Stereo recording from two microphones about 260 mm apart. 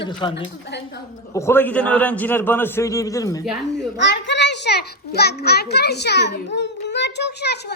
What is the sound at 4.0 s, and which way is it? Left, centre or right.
A child's voice, left.